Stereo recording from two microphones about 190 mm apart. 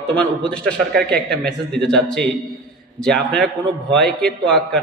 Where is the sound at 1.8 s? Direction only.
5° left (ahead or behind).